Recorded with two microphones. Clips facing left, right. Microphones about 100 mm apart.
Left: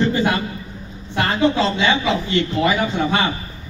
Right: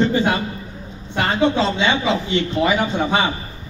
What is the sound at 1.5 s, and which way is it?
A man's voice, 30° right (ahead or behind).